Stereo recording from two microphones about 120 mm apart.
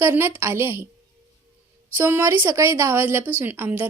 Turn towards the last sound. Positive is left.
turn(degrees=-15)  # may be behind; listen again after turning